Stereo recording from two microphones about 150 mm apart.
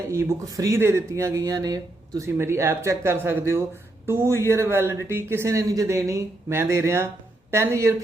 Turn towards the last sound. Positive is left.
turn(degrees=-20)  # may be behind; listen again after turning